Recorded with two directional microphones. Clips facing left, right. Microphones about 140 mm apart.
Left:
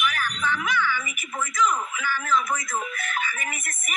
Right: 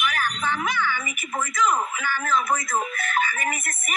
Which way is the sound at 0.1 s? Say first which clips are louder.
Right 1 dB; 45° right (ahead or behind).